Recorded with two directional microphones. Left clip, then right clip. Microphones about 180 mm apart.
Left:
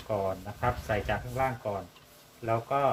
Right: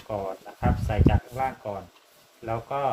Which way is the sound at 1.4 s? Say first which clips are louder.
Right 1 dB; 30° right (ahead or behind).